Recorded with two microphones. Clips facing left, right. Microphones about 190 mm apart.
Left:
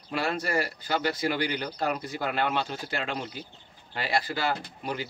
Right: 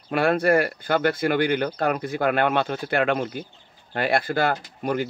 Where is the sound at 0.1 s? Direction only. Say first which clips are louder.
Right 9 dB; 55° right (ahead or behind).